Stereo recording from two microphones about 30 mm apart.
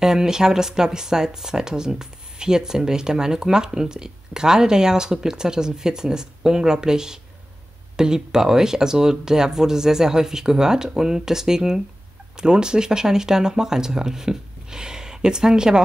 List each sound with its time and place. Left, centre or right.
0.0 s speech: centre